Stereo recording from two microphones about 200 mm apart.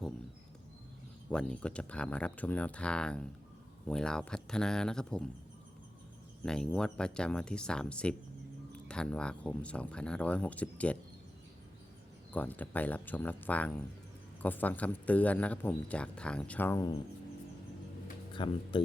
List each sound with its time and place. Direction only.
1.3 s speech: 5° left (ahead or behind)
6.4 s speech: 5° left (ahead or behind)
12.3 s speech: 10° left (ahead or behind)
18.3 s speech: 25° left (ahead or behind)